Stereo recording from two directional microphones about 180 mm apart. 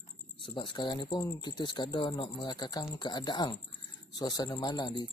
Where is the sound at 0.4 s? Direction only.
30° left (ahead or behind).